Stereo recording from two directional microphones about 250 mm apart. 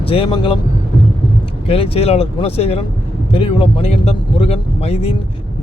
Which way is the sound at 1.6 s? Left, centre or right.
Left.